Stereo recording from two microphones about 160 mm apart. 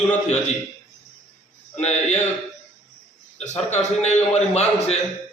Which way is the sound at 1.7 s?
45° left (ahead or behind).